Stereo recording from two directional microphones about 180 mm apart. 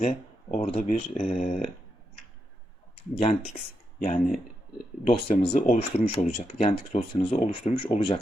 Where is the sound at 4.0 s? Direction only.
45° left (ahead or behind).